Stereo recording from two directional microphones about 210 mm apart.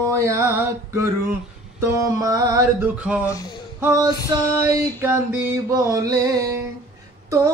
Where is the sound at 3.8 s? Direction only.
15° right (ahead or behind).